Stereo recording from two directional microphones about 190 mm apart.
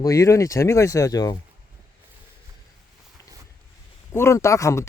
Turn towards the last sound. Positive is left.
turn(degrees=15)  # may be behind; listen again after turning